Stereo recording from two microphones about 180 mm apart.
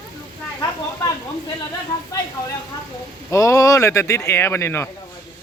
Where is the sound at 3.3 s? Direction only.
15° left (ahead or behind).